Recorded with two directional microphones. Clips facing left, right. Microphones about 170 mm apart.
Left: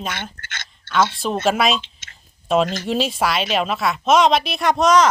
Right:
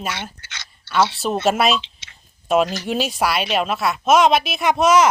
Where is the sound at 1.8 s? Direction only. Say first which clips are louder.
Right 2 dB; 50° left (ahead or behind).